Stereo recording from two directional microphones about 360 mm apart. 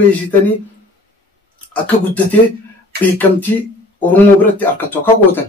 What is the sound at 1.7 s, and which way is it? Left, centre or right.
Speech, centre.